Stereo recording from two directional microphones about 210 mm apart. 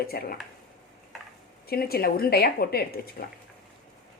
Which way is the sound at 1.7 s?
45° left (ahead or behind).